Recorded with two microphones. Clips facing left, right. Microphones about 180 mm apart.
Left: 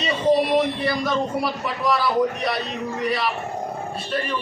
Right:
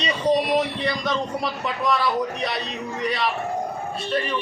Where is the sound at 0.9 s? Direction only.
5° left (ahead or behind).